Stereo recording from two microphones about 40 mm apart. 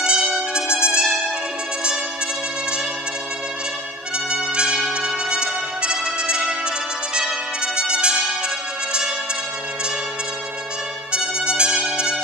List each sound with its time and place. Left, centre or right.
0.0 s music: right
4.3 s brass instrument: right
5.3 s music: right
7.2 s trumpet: centre
11.1 s trumpet: right